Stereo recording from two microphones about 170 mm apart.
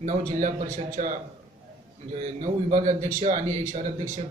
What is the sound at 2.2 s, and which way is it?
A man's voice, 45° right (ahead or behind).